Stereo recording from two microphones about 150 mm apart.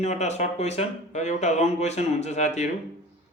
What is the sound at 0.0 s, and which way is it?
Speech, 50° left (ahead or behind).